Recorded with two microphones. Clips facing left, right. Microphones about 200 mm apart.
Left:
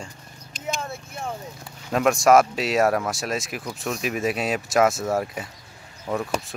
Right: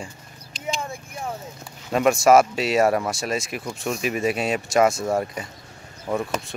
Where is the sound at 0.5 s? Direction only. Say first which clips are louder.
Right 1 dB; 50° left (ahead or behind).